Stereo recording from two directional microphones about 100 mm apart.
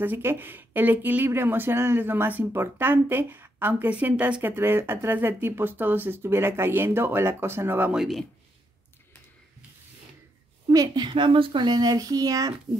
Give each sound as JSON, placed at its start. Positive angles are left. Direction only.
{"t": 0.0, "sound": "speech", "side_deg": -20}
{"t": 7.9, "sound": "speech", "side_deg": 0}
{"t": 11.0, "sound": "speech", "side_deg": -55}